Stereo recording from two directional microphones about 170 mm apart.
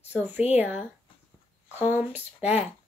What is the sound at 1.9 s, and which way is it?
Speech, 10° right (ahead or behind).